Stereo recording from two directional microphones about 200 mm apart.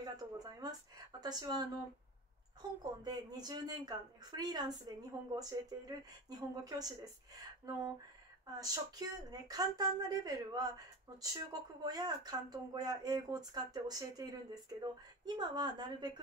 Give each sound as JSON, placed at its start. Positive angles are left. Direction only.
{"t": 0.0, "sound": "a woman's voice", "side_deg": -20}
{"t": 2.8, "sound": "speech", "side_deg": -20}